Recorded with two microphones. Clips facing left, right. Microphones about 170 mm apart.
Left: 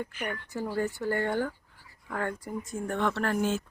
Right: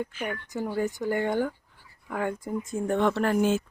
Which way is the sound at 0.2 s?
15° right (ahead or behind).